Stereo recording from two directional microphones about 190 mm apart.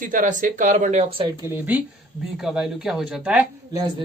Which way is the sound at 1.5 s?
10° right (ahead or behind).